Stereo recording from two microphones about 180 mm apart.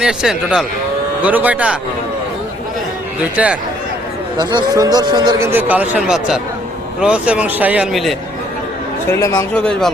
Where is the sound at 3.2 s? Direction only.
5° right (ahead or behind).